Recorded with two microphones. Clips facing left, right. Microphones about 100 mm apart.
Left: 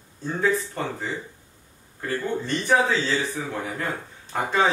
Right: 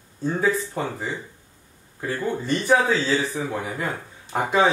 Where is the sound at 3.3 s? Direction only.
10° right (ahead or behind).